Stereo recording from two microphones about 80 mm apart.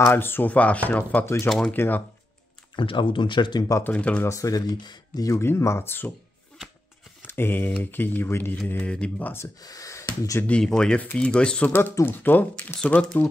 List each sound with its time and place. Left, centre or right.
0.0 s speech: left
1.2 s speech: left
1.7 s speech: left
2.7 s speech: left
3.8 s speech: centre
4.2 s speech: left
5.3 s speech: left
7.2 s speech: left
9.6 s speech: left
10.4 s speech: centre
11.9 s speech: left